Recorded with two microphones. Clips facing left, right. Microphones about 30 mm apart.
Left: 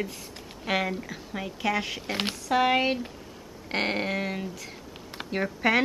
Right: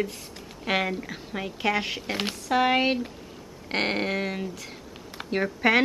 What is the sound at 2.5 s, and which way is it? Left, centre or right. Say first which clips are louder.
A woman's voice: right 1 dB; centre.